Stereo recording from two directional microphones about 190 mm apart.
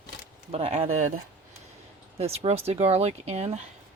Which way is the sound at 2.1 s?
30° right (ahead or behind).